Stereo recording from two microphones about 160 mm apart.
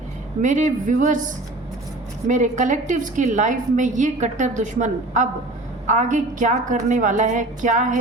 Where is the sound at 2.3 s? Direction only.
50° right (ahead or behind).